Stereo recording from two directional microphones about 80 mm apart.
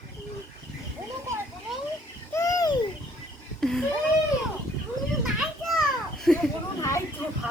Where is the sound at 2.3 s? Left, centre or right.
Left.